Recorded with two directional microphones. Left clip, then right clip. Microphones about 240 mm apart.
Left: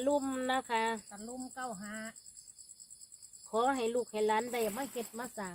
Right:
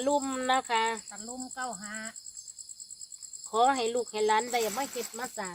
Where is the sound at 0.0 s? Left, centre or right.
Centre.